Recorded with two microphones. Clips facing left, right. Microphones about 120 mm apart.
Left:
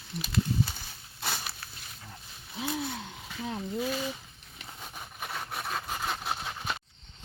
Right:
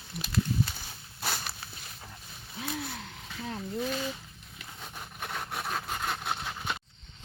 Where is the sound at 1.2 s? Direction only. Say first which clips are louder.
Even; centre (ahead or behind).